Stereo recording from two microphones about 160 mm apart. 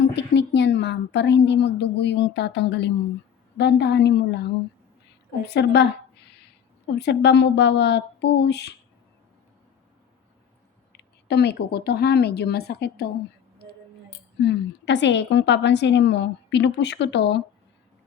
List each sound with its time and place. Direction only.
0.2 s a woman's voice: 90° left
10.9 s a woman's voice: 90° left
14.4 s a woman's voice: 90° left